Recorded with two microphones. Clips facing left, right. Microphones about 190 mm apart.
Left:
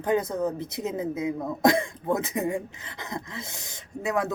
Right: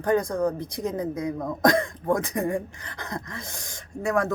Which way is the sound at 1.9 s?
25° left (ahead or behind).